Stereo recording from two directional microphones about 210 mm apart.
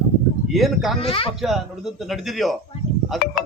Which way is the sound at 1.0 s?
25° left (ahead or behind).